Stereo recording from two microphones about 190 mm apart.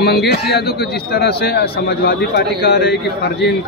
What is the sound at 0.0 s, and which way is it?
A man's voice, 60° left (ahead or behind).